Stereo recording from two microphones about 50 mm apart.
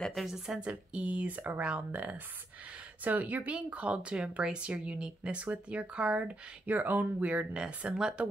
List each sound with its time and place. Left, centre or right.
0.1 s speech: centre
0.6 s speech: right
5.4 s speech: right